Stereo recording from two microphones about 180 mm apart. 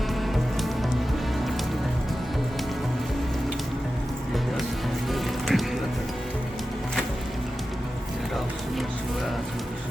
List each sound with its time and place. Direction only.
5.1 s music: centre (ahead or behind)